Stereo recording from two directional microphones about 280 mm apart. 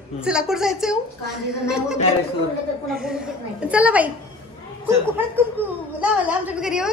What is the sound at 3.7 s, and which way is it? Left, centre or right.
Speech, centre.